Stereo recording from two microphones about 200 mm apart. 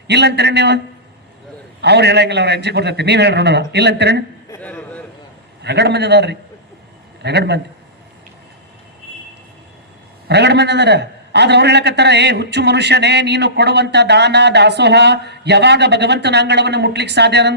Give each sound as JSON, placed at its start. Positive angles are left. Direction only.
{"t": 0.1, "sound": "a man's voice", "side_deg": -55}
{"t": 1.8, "sound": "a man's voice", "side_deg": -55}
{"t": 4.5, "sound": "a sound", "side_deg": 10}
{"t": 5.6, "sound": "a man's voice", "side_deg": -60}
{"t": 10.2, "sound": "a man's voice", "side_deg": -55}